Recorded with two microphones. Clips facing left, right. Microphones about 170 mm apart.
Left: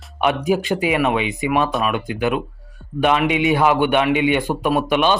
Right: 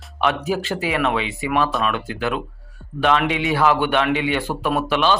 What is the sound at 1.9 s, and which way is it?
Speech, 15° left (ahead or behind).